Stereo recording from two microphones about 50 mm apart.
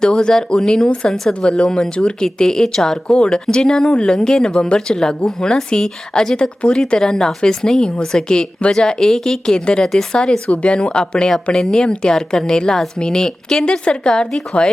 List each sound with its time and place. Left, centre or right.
0.0 s speech: centre